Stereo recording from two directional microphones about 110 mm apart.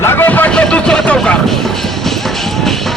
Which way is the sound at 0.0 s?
20° left (ahead or behind).